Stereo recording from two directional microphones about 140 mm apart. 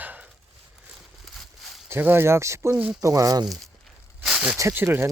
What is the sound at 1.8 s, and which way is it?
Speech, 15° right (ahead or behind).